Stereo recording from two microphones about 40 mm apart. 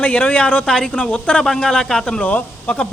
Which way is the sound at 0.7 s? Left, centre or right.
Centre.